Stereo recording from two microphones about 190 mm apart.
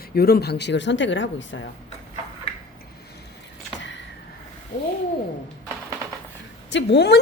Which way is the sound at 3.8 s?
70° left (ahead or behind).